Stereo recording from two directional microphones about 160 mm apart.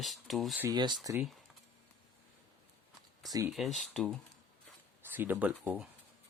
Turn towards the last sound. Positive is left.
turn(degrees=-5)  # may be behind; listen again after turning